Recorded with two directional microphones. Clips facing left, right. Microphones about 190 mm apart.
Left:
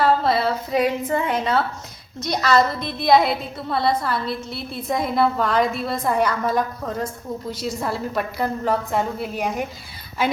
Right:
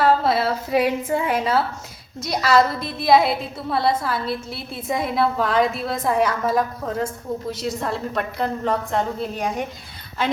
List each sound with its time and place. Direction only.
0.0 s a woman's voice: 5° right (ahead or behind)